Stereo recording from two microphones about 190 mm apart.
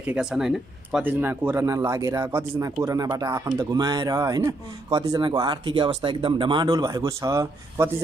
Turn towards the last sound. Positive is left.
turn(degrees=-20)  # may be behind; listen again after turning